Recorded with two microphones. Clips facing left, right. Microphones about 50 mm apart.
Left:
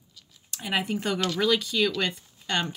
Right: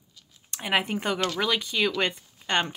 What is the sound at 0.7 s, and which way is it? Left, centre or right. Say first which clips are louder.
Speech: right 2 dB; right.